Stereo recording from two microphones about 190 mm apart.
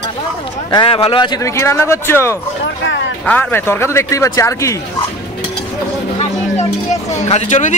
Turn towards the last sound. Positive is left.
turn(degrees=40)  # may be behind; listen again after turning